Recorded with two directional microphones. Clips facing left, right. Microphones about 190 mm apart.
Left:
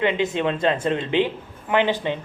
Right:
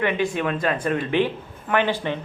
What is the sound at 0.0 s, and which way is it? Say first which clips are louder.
Speech: left 1 dB; 20° left (ahead or behind).